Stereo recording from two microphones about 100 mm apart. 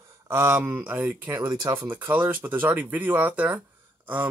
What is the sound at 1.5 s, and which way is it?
Speech, 40° right (ahead or behind).